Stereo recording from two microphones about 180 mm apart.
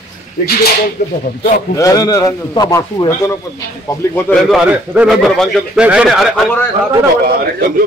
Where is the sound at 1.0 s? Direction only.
40° left (ahead or behind).